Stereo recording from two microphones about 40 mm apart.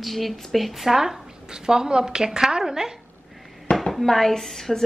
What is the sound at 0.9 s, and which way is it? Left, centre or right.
A woman's voice, centre.